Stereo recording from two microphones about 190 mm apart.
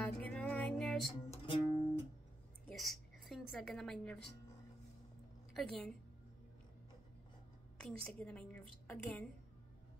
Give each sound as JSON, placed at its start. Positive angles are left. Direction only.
{"t": 0.0, "sound": "music", "side_deg": 5}
{"t": 1.3, "sound": "music", "side_deg": 25}
{"t": 2.7, "sound": "a sound", "side_deg": 0}
{"t": 5.5, "sound": "a woman's voice", "side_deg": 0}
{"t": 7.7, "sound": "a woman's voice", "side_deg": 5}